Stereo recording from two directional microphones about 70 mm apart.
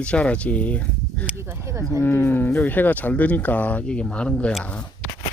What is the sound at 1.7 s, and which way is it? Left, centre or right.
Speech, right.